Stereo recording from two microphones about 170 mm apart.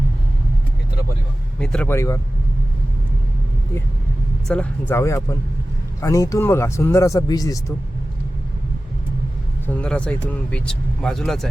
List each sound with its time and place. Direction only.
1.5 s speech: 5° left (ahead or behind)
4.4 s speech: 5° left (ahead or behind)
9.6 s speech: 10° left (ahead or behind)